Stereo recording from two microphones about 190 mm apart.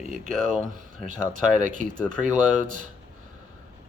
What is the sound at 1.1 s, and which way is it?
Speech, 45° right (ahead or behind).